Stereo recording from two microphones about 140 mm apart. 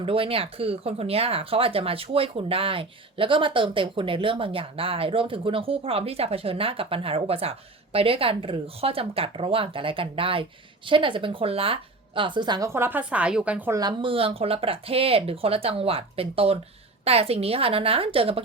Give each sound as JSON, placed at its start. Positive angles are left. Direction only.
{"t": 0.0, "sound": "speech", "side_deg": -40}
{"t": 13.7, "sound": "speech", "side_deg": -35}